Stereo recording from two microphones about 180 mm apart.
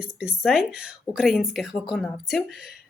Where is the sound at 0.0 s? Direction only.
5° right (ahead or behind).